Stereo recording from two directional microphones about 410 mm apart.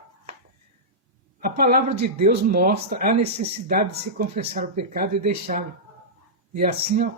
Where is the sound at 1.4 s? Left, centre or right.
Right.